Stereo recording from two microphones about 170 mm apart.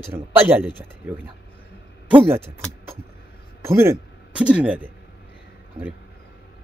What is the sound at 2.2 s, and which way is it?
Speech, 15° right (ahead or behind).